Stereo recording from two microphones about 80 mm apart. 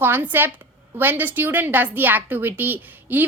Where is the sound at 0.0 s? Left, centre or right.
Right.